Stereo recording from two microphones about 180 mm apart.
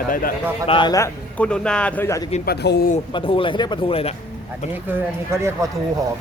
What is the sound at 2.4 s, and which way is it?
Speech, 65° left (ahead or behind).